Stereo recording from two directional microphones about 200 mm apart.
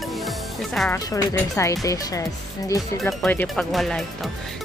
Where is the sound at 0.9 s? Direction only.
15° left (ahead or behind).